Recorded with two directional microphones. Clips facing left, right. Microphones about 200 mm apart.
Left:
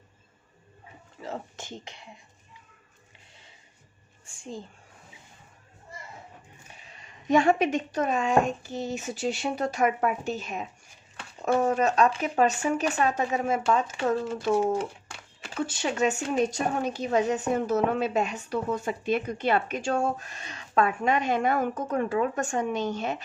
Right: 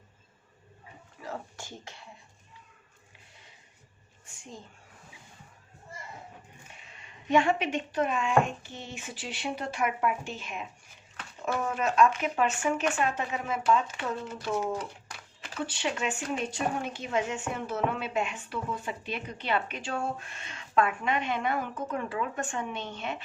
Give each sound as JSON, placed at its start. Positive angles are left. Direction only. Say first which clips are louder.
{"t": 1.2, "sound": "speech", "louder": "left 3 dB", "side_deg": 20}
{"t": 4.3, "sound": "speech", "louder": "left 7 dB", "side_deg": 30}
{"t": 6.8, "sound": "speech", "louder": "left 5 dB", "side_deg": 40}
{"t": 14.0, "sound": "speech", "louder": "left 8 dB", "side_deg": 25}
{"t": 15.6, "sound": "speech", "louder": "left 6 dB", "side_deg": 45}